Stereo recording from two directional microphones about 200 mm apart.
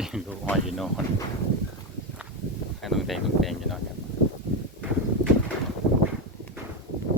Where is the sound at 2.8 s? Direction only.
Centre (ahead or behind).